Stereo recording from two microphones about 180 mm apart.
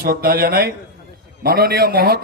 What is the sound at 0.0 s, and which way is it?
A man's voice, 55° right (ahead or behind).